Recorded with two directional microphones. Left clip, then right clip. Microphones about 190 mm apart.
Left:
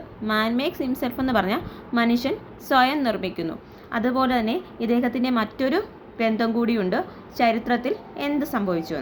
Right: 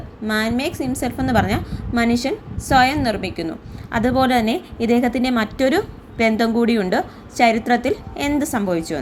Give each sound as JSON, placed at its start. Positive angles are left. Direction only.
{"t": 0.3, "sound": "a woman's voice", "side_deg": -10}